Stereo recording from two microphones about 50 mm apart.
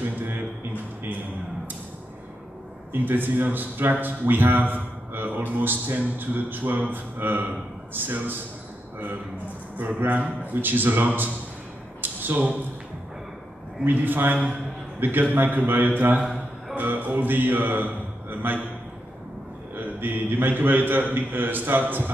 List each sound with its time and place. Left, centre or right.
2.9 s a man's voice: right
9.8 s a man's voice: right
12.0 s a sound: right
13.8 s a man's voice: right
19.7 s a man's voice: right